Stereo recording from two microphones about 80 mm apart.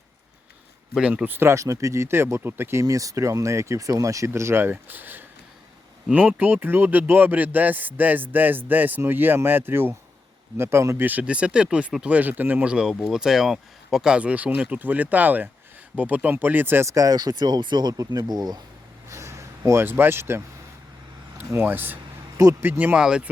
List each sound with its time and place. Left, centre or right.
1.1 s speech: right
2.8 s speech: right
4.3 s speech: right
11.0 s speech: centre
16.9 s speech: right
19.0 s a sound: right
21.3 s speech: right
23.0 s speech: centre